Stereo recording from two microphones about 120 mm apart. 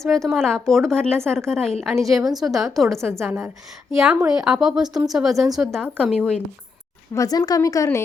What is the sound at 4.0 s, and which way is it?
A woman's voice, 5° right (ahead or behind).